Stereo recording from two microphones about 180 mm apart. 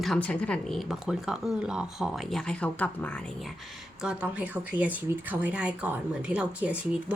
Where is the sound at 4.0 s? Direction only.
5° right (ahead or behind).